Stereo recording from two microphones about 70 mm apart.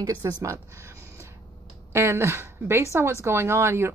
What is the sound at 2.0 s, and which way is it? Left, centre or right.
Speech, right.